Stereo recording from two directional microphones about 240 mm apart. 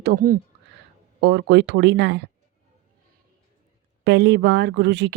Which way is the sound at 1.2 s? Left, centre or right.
Right.